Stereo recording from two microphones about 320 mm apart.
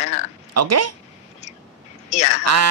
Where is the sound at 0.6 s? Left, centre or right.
Right.